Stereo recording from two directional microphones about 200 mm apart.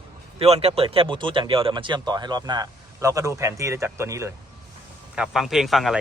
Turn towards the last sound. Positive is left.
turn(degrees=0)  # may be behind; listen again after turning